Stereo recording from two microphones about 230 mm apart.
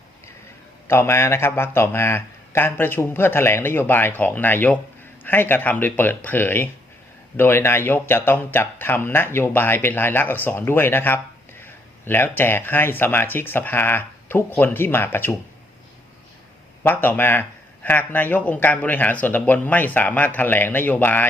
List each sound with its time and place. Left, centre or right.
0.9 s speech: centre
16.8 s speech: centre